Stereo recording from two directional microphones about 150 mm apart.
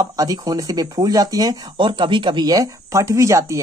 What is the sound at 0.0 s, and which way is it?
Speech, 25° right (ahead or behind).